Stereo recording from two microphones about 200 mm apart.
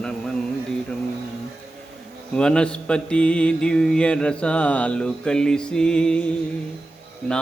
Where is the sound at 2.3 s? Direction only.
5° left (ahead or behind).